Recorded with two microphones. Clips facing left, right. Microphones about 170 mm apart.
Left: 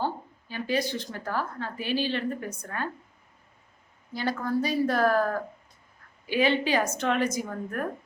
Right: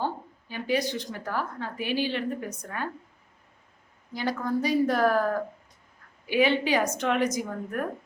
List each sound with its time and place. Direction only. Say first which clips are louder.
0.0 s a woman's voice: even; 15° right (ahead or behind)
4.1 s a woman's voice: even; 15° right (ahead or behind)